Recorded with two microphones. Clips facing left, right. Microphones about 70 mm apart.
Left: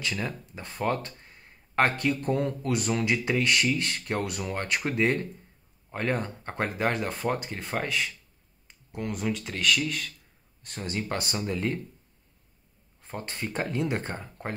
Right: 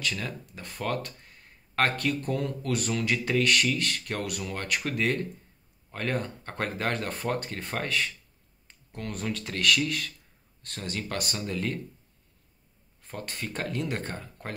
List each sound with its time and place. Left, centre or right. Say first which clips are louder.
0.0 s speech: left 1 dB; left
10.9 s speech: left 2 dB; left
13.0 s speech: left 2 dB; left